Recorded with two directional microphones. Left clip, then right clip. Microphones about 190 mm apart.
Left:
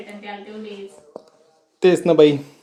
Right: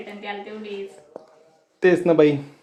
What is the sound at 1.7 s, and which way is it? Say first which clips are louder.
Speech: left 3 dB; 15° left (ahead or behind).